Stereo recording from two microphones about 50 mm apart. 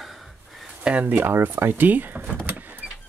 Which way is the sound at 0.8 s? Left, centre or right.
Right.